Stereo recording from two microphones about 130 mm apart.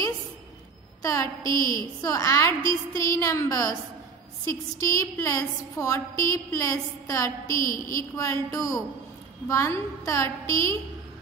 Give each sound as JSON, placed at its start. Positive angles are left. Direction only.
{"t": 1.0, "sound": "a sound", "side_deg": 25}
{"t": 1.4, "sound": "a woman's voice", "side_deg": -35}
{"t": 2.0, "sound": "a woman's voice", "side_deg": 25}
{"t": 4.7, "sound": "a woman's voice", "side_deg": 25}